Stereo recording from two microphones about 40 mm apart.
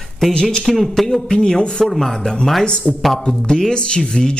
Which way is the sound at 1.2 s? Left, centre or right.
Centre.